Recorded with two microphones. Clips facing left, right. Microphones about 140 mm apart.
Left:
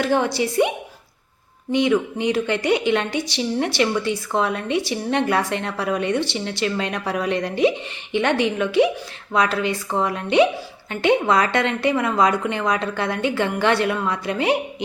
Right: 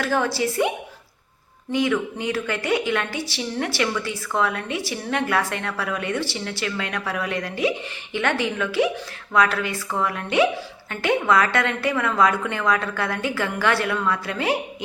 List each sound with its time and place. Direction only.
0.0 s a woman's voice: 20° left (ahead or behind)